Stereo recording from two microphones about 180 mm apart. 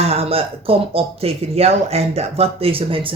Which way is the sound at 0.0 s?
35° right (ahead or behind).